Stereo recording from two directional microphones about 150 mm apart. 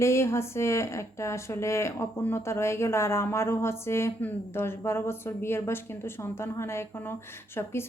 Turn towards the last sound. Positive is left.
turn(degrees=15)  # may be behind; listen again after turning